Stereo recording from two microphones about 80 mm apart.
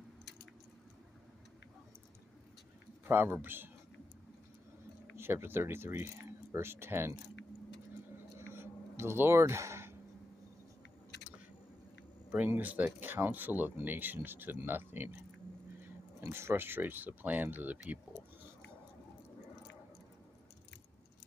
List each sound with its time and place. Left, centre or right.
3.1 s speech: right
5.1 s speech: right
8.4 s a sound: right
12.3 s speech: centre
16.2 s speech: right